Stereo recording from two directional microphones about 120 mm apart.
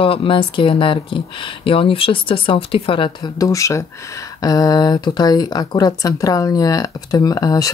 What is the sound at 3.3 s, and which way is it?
Speech, 25° left (ahead or behind).